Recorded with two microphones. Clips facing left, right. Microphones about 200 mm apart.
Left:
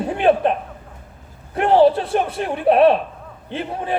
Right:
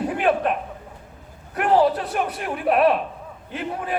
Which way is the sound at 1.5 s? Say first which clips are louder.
Left 4 dB; 30° left (ahead or behind).